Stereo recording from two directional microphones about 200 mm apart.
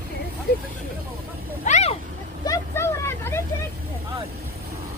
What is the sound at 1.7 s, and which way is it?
Vehicle, 35° left (ahead or behind).